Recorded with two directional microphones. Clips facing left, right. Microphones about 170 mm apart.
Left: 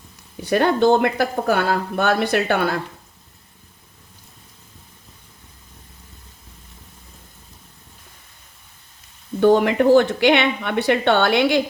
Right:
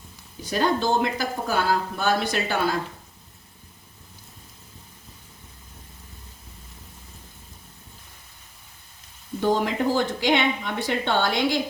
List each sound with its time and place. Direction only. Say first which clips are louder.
0.4 s speech: left 7 dB; 65° left (ahead or behind)
9.4 s a woman's voice: left 8 dB; 65° left (ahead or behind)